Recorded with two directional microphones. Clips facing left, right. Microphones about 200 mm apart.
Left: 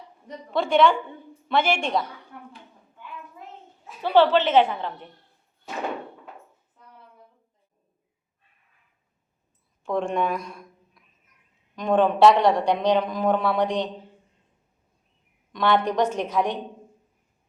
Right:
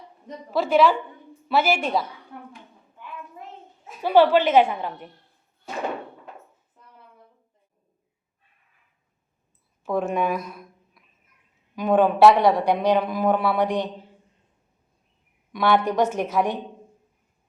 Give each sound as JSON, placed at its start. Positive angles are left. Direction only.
{"t": 0.5, "sound": "a woman's voice", "side_deg": -5}
{"t": 2.3, "sound": "a sound", "side_deg": -25}
{"t": 3.8, "sound": "a woman's voice", "side_deg": -10}
{"t": 9.8, "sound": "a woman's voice", "side_deg": -5}
{"t": 13.7, "sound": "a man's voice", "side_deg": 15}
{"t": 15.5, "sound": "a woman's voice", "side_deg": -10}